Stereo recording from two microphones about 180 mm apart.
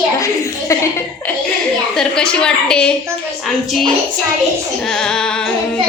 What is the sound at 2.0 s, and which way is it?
Speech, 5° left (ahead or behind).